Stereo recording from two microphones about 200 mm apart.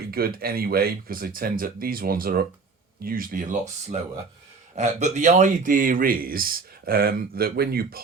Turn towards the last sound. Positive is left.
turn(degrees=-50)  # may be behind; listen again after turning